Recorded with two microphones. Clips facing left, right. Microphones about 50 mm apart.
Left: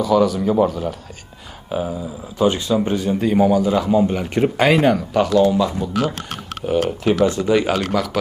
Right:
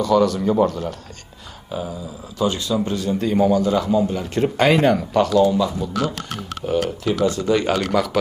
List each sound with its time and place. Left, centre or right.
0.0 s speech: centre
1.7 s a man's voice: left
4.0 s speech: left
4.4 s speech: centre
5.6 s a man's voice: left
7.5 s speech: centre
7.9 s speech: centre